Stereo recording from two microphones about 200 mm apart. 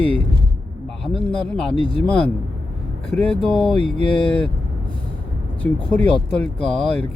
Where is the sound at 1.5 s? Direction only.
5° left (ahead or behind).